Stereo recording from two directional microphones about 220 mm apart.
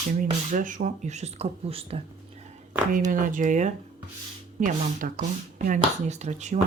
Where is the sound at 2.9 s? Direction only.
40° right (ahead or behind).